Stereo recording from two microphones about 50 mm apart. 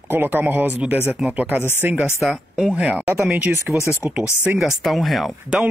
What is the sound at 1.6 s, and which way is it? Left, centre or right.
Speech, left.